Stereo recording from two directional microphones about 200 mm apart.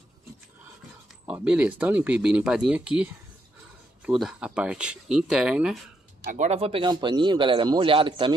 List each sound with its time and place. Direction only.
1.2 s speech: 5° right (ahead or behind)
4.0 s speech: centre (ahead or behind)
6.3 s a man's voice: 35° right (ahead or behind)